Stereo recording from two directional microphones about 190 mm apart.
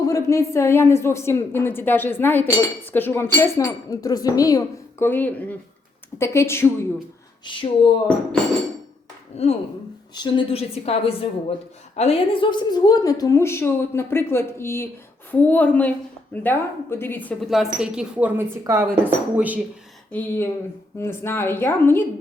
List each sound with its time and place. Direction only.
0.0 s speech: 15° left (ahead or behind)
7.4 s speech: 25° left (ahead or behind)
9.3 s a woman's voice: 35° left (ahead or behind); by 19.5 s 10° right (ahead or behind)
20.1 s speech: 10° left (ahead or behind)